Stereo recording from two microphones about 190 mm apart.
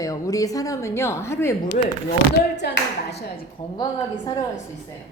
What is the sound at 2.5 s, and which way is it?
Speech, 65° left (ahead or behind).